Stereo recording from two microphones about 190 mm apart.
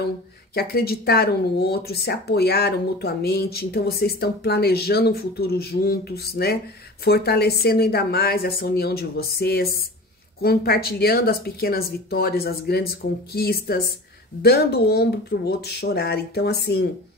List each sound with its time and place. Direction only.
0.6 s speech: 55° left (ahead or behind)